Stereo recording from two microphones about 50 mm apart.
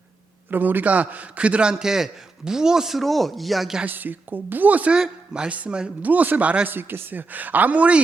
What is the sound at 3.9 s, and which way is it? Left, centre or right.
A woman's voice, right.